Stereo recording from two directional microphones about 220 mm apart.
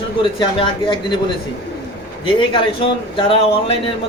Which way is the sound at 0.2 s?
20° left (ahead or behind).